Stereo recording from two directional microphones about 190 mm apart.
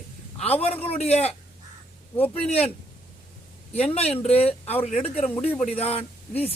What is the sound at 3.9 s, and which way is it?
Speech, 30° left (ahead or behind).